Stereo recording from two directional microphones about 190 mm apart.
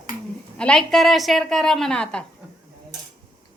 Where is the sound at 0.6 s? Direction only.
5° left (ahead or behind).